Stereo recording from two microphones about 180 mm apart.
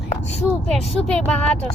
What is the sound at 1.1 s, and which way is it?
Speech, 5° left (ahead or behind).